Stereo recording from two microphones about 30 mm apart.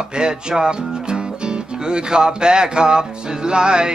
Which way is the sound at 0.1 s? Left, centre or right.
Right.